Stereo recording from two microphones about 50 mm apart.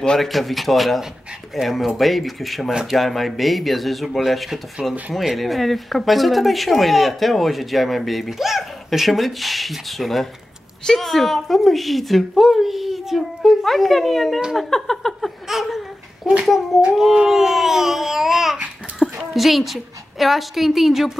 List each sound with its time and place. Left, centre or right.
0.2 s speech: centre
2.7 s speech: centre
3.0 s speech: centre
14.6 s a sound: centre
15.4 s a sound: centre
16.4 s speech: centre
17.1 s speech: centre
19.0 s a sound: centre
19.3 s speech: centre